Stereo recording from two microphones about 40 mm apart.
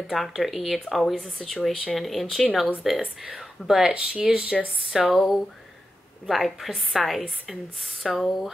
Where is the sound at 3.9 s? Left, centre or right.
Right.